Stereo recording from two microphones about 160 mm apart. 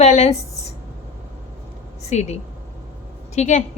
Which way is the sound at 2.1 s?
45° left (ahead or behind).